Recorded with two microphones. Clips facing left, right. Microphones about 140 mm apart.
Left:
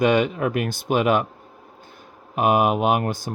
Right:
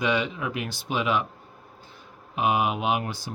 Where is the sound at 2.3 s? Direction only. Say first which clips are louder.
Left 6 dB; 50° left (ahead or behind).